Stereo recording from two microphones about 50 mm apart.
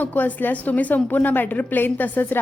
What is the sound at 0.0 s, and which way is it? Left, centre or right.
A woman's voice, left.